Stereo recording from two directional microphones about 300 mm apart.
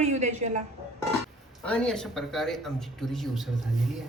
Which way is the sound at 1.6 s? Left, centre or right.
Centre.